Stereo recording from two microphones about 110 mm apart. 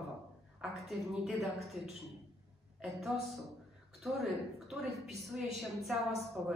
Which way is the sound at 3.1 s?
5° right (ahead or behind).